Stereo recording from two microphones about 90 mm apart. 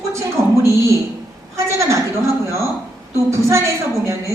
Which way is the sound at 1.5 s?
35° right (ahead or behind).